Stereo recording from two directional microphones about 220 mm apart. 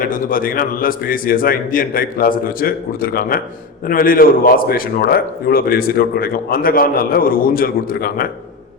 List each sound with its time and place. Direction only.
0.0 s a man's voice: 40° left (ahead or behind)